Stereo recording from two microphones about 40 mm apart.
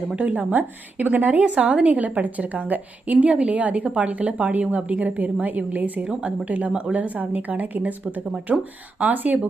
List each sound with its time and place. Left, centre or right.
0.2 s a woman's voice: right
9.0 s a woman's voice: right